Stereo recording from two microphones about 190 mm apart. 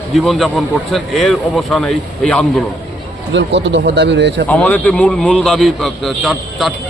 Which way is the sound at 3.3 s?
70° right (ahead or behind).